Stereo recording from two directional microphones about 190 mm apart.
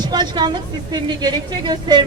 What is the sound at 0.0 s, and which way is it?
A woman's voice, 20° right (ahead or behind).